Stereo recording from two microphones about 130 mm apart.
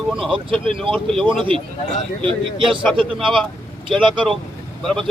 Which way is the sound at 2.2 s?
40° right (ahead or behind).